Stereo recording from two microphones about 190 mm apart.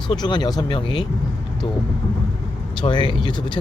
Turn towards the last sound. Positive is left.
turn(degrees=25)  # may be behind; listen again after turning